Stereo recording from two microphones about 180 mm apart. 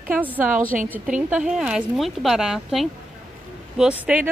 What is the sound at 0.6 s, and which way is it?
Speech, 50° right (ahead or behind).